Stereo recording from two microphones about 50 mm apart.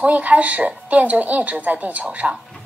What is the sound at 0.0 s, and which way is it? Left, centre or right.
A woman's voice, right.